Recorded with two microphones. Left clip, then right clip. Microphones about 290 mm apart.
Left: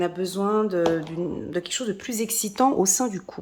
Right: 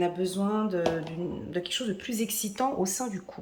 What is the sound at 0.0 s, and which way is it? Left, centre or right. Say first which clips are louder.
Music: left 3 dB; centre.